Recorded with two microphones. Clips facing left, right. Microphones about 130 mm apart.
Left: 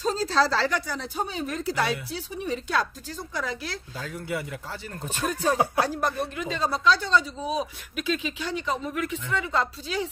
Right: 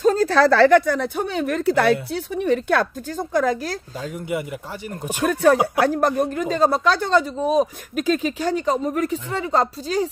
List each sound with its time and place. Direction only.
0.0 s speech: 55° right (ahead or behind)
4.0 s speech: 20° right (ahead or behind)
5.2 s speech: 65° right (ahead or behind)
5.8 s speech: 50° right (ahead or behind)